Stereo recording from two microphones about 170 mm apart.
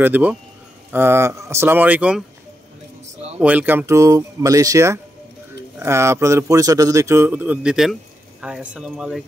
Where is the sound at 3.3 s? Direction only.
10° right (ahead or behind).